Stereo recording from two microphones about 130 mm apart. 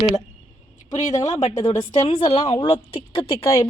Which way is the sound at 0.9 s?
25° left (ahead or behind).